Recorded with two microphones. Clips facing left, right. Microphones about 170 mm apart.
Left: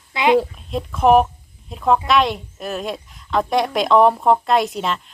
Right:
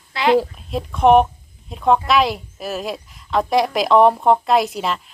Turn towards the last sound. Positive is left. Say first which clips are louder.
# right 1 dB
turn(degrees=0)  # may be behind; listen again after turning